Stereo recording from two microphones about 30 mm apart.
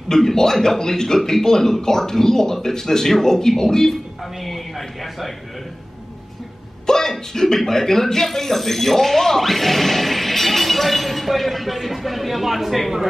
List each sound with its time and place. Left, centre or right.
0.1 s a man's voice: centre
6.9 s speech: centre